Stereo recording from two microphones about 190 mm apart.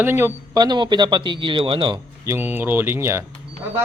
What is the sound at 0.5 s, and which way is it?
Speech, 20° right (ahead or behind).